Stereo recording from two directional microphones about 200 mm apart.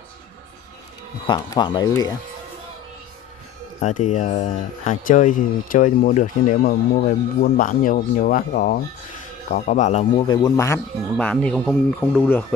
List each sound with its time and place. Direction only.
1.2 s speech: 20° left (ahead or behind)
3.8 s speech: 35° left (ahead or behind)
10.2 s speech: 20° left (ahead or behind)